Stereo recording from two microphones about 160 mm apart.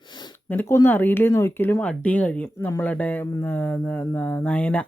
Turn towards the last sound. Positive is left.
turn(degrees=10)  # may be behind; listen again after turning